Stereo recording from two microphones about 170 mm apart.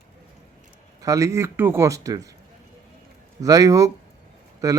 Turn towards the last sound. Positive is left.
turn(degrees=-20)  # may be behind; listen again after turning